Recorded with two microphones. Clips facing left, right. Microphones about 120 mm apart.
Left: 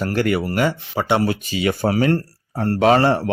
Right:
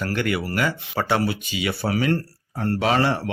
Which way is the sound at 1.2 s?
40° left (ahead or behind).